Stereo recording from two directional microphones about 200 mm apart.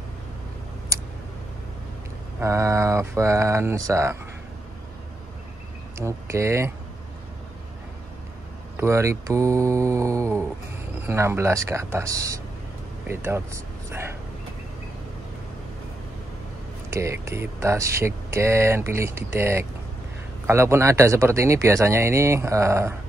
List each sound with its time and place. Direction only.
0.9 s tick: 15° right (ahead or behind)
2.4 s speech: 15° right (ahead or behind)
5.9 s speech: 15° right (ahead or behind)
8.7 s speech: 15° right (ahead or behind)
16.9 s speech: 15° right (ahead or behind)